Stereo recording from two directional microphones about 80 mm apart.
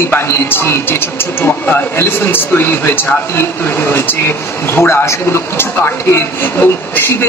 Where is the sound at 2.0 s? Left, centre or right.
Left.